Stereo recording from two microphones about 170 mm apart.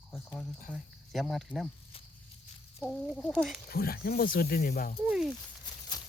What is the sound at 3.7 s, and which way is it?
Speech, 60° left (ahead or behind).